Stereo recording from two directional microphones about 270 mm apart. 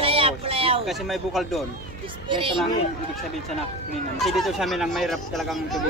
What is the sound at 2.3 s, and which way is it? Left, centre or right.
Speech, centre.